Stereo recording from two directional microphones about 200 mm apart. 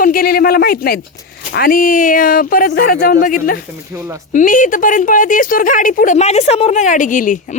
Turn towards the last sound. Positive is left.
turn(degrees=40)  # may be behind; listen again after turning